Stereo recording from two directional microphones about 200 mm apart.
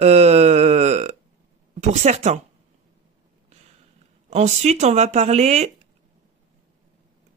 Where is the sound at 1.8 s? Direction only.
35° right (ahead or behind).